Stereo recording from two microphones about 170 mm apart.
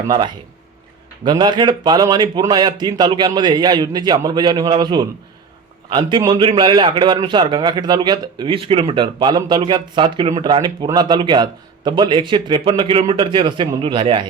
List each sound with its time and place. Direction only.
1.2 s a man's voice: 25° right (ahead or behind)